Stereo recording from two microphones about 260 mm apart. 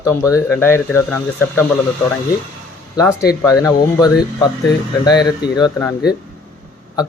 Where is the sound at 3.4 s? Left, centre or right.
Centre.